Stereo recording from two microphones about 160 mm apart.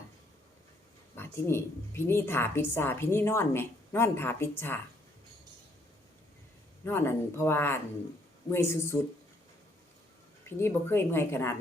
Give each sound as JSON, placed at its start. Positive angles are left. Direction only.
{"t": 1.1, "sound": "a woman's voice", "side_deg": 15}
{"t": 6.8, "sound": "a woman's voice", "side_deg": 15}
{"t": 10.6, "sound": "a woman's voice", "side_deg": 15}